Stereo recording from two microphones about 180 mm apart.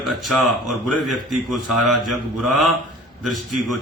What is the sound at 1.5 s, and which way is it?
Speech, centre (ahead or behind).